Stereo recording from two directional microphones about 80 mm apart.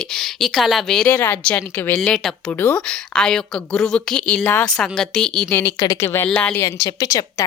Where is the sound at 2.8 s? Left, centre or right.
Centre.